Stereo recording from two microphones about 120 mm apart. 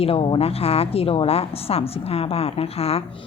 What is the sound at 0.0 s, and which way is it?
A woman's voice, 50° left (ahead or behind).